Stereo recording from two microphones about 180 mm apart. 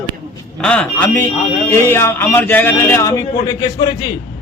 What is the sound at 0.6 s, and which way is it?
A man's voice, 5° left (ahead or behind).